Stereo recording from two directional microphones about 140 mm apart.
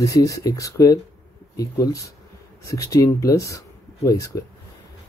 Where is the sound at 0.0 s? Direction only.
25° left (ahead or behind).